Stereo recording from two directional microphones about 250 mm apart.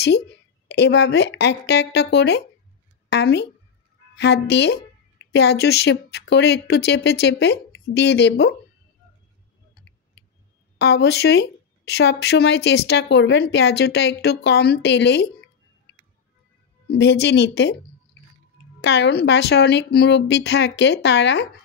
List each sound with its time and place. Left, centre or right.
0.7 s a woman's voice: left
10.8 s speech: left
16.8 s speech: left
18.8 s speech: left